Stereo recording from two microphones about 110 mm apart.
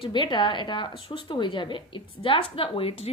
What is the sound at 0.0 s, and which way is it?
A woman's voice, 45° left (ahead or behind).